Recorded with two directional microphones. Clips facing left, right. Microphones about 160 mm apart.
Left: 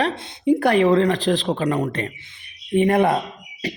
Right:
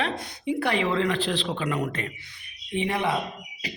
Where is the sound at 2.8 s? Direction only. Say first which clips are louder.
Left 10 dB; 50° left (ahead or behind).